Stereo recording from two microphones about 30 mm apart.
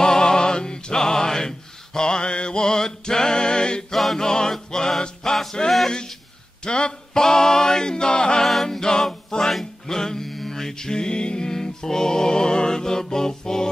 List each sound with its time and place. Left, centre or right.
0.0 s music: left
2.0 s male singing: left
2.7 s male singing: centre
3.9 s a capella: centre
4.2 s male singing: centre
5.2 s music: centre
6.6 s male singing: left
9.5 s music: centre